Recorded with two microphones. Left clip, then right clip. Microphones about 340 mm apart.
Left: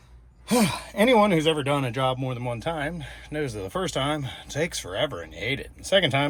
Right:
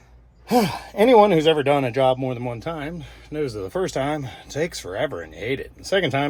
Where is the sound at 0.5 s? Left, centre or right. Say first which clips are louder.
Right 4 dB; left.